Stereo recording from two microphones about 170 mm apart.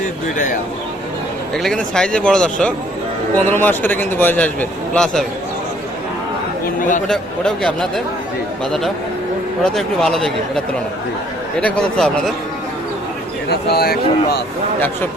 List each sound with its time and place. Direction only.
1.5 s a man's voice: 5° left (ahead or behind)
6.7 s a man's voice: 50° left (ahead or behind)
7.1 s a man's voice: 5° left (ahead or behind)
9.6 s a man's voice: centre (ahead or behind)
11.6 s a man's voice: 5° left (ahead or behind)
13.5 s speech: 70° left (ahead or behind)